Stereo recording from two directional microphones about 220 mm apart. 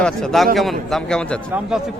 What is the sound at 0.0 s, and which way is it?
A man's voice, centre (ahead or behind).